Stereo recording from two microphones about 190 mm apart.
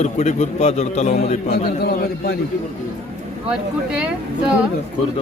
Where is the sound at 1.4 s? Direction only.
55° left (ahead or behind).